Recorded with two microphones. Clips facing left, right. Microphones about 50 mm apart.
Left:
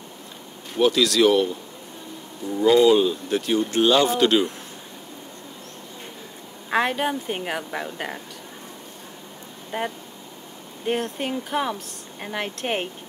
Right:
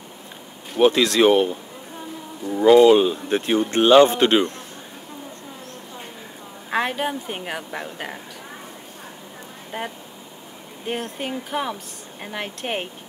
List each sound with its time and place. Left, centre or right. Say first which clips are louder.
0.7 s speech: right 2 dB; right
6.7 s speech: left 1 dB; centre
9.7 s speech: left 3 dB; centre